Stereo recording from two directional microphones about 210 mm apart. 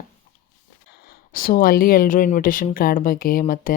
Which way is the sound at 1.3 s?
45° left (ahead or behind).